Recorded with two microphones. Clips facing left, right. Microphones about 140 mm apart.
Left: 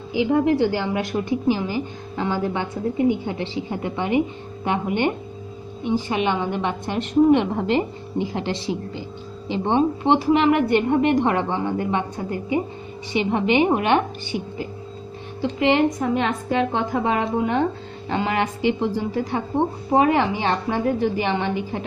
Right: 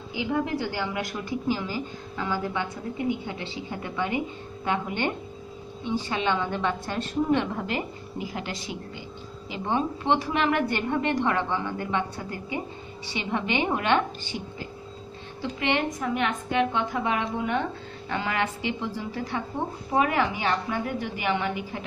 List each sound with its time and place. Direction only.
0.1 s a woman's voice: 25° left (ahead or behind)
16.1 s a woman's voice: 30° left (ahead or behind)